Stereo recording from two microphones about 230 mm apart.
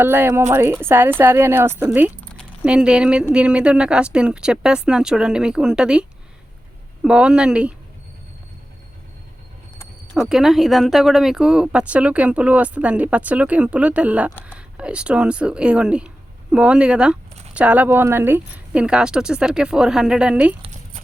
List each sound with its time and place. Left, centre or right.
0.0 s speech: centre
10.2 s speech: centre
20.6 s a sound: right